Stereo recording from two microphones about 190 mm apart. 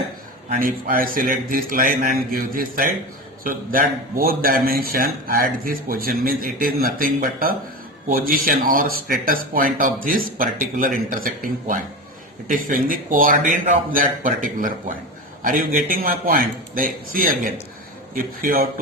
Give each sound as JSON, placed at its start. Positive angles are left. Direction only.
{"t": 0.5, "sound": "a man's voice", "side_deg": -50}